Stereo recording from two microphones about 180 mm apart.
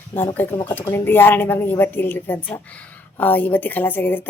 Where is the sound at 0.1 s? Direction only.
10° left (ahead or behind).